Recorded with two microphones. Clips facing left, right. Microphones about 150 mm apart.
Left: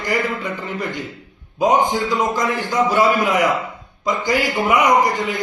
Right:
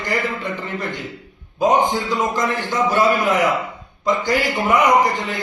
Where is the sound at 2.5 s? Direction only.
15° left (ahead or behind).